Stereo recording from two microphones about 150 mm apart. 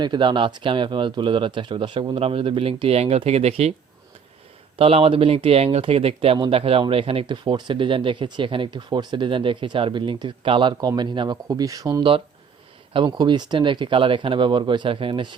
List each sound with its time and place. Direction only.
0.0 s speech: 30° right (ahead or behind)
4.8 s speech: 40° right (ahead or behind)